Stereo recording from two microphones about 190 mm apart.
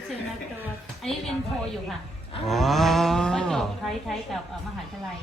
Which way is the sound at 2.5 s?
Centre (ahead or behind).